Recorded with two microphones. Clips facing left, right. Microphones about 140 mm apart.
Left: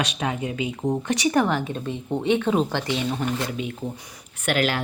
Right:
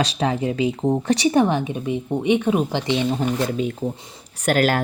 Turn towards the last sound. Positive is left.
turn(degrees=-45)  # may be behind; listen again after turning